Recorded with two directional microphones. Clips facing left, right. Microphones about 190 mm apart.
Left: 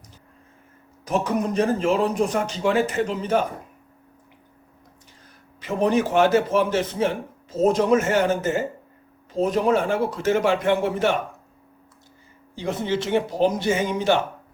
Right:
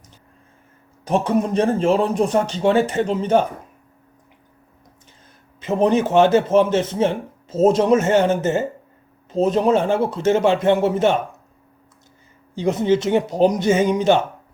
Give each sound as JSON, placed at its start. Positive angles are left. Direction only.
{"t": 1.0, "sound": "a man's voice", "side_deg": -30}
{"t": 5.5, "sound": "a man's voice", "side_deg": -25}
{"t": 12.5, "sound": "a man's voice", "side_deg": -20}